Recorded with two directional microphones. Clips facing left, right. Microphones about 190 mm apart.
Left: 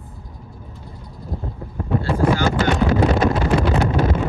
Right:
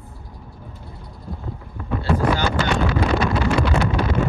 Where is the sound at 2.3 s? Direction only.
45° left (ahead or behind).